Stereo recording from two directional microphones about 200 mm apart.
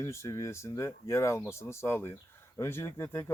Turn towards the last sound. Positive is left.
turn(degrees=15)  # may be behind; listen again after turning